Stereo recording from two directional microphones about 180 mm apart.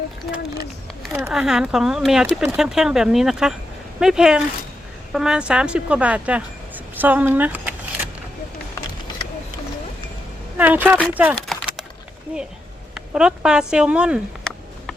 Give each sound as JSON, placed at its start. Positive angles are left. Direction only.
{"t": 1.3, "sound": "speech", "side_deg": -5}
{"t": 10.6, "sound": "speech", "side_deg": -10}
{"t": 11.4, "sound": "typing", "side_deg": 0}
{"t": 12.3, "sound": "speech", "side_deg": -5}